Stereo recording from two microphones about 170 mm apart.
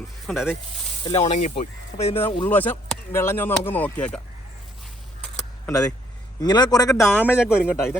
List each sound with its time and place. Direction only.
0.3 s speech: 5° right (ahead or behind)
1.2 s speech: 45° left (ahead or behind)
2.4 s speech: 10° left (ahead or behind)
5.6 s a man's voice: 20° left (ahead or behind)
7.0 s speech: 10° left (ahead or behind)
7.3 s speech: 5° right (ahead or behind)
7.6 s speech: 15° left (ahead or behind)